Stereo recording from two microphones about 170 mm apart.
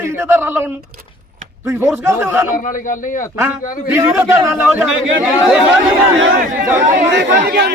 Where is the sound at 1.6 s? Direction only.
15° right (ahead or behind).